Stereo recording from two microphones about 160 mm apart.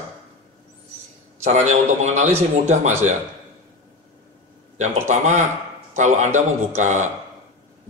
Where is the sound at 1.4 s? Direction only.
45° right (ahead or behind).